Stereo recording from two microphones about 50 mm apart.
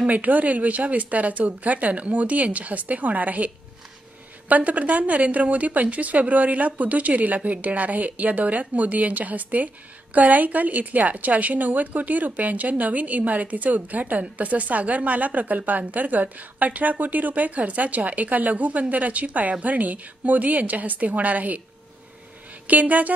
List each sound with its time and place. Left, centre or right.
0.1 s a woman's voice: right
22.7 s a woman's voice: right